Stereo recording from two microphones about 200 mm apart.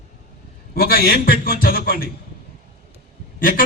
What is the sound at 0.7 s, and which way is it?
A man's voice, 50° left (ahead or behind).